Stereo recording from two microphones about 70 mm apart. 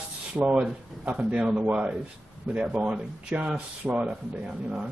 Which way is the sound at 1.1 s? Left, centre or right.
Centre.